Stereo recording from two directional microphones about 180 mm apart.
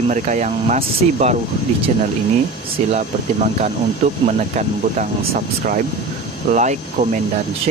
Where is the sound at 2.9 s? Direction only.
40° right (ahead or behind).